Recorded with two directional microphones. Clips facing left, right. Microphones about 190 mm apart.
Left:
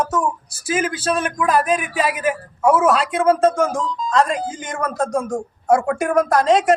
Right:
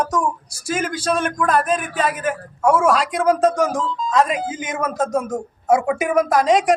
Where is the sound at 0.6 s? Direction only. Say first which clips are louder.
Left 1 dB; 5° left (ahead or behind).